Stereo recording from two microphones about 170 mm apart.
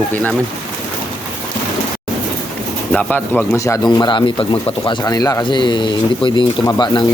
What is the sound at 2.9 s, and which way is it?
Speech, 10° left (ahead or behind).